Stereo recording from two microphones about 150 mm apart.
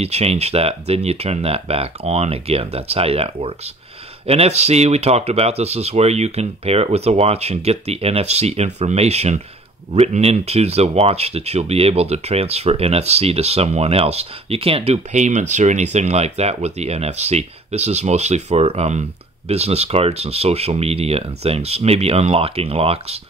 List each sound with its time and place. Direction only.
0.0 s speech: 45° right (ahead or behind)